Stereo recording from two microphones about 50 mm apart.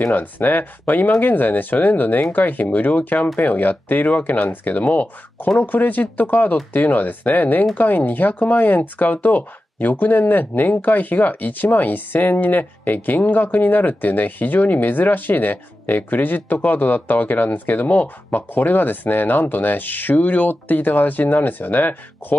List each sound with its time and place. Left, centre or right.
0.0 s speech: left